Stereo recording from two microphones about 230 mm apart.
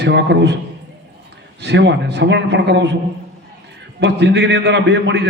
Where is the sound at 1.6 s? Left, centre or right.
Right.